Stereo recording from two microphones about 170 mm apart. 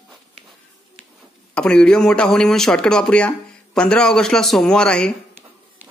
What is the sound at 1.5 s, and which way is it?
Speech, 5° left (ahead or behind).